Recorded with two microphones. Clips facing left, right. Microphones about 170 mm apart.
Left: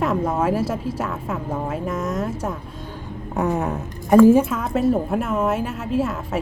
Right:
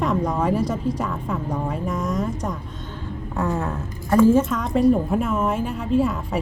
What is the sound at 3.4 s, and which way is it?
A woman's voice, 20° left (ahead or behind).